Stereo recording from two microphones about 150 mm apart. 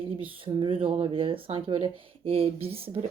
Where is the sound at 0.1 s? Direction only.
35° right (ahead or behind).